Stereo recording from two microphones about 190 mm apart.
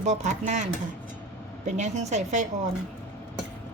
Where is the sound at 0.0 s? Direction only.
40° right (ahead or behind).